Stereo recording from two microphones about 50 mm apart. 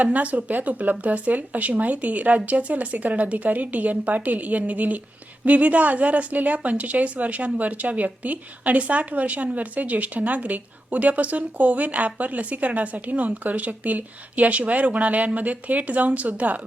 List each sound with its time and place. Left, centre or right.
0.0 s speech: right